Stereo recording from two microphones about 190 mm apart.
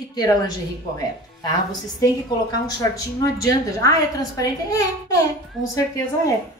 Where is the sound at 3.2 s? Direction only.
20° left (ahead or behind).